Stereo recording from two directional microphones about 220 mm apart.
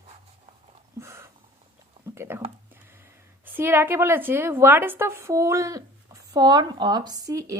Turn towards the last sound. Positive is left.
turn(degrees=-15)  # may be behind; listen again after turning